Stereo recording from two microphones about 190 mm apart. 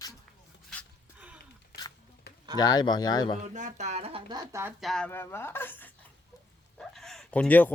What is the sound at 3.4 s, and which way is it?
Speech, 40° right (ahead or behind).